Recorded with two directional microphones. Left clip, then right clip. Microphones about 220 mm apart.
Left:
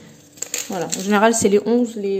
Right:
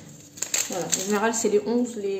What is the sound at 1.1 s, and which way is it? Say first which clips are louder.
A woman's voice: left 9 dB; 40° left (ahead or behind).